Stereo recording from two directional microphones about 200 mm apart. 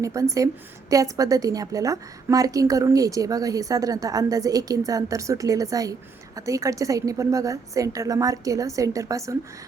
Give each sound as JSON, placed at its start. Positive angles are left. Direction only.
{"t": 0.0, "sound": "a woman's voice", "side_deg": -15}